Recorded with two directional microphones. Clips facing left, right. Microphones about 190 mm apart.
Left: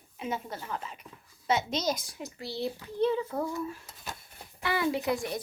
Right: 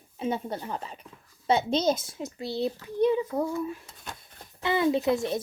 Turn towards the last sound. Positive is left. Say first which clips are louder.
# right 5 dB
turn(degrees=-25)  # may be behind; listen again after turning